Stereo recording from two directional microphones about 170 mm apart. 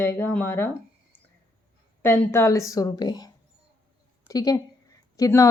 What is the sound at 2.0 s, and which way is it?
A woman's voice, 10° left (ahead or behind).